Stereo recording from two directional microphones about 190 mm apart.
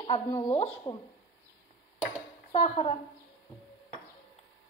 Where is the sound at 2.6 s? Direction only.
30° left (ahead or behind).